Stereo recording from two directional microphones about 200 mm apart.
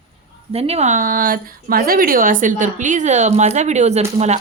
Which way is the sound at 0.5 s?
30° right (ahead or behind).